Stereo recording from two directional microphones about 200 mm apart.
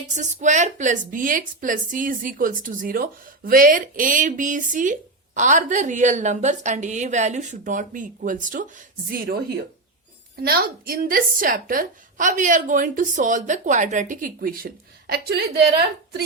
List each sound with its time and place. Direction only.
0.1 s a woman's voice: 35° right (ahead or behind)
10.4 s a woman's voice: 50° right (ahead or behind)